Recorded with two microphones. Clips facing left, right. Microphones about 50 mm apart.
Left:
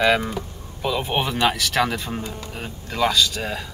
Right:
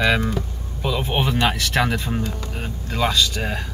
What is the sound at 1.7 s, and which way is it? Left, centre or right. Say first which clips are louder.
Speech: right 1 dB; centre.